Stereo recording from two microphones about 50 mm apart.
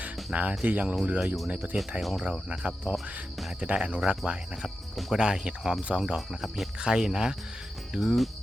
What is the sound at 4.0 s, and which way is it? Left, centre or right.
Speech, centre.